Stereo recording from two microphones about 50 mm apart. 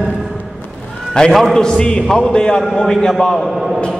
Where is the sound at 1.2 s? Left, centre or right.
Centre.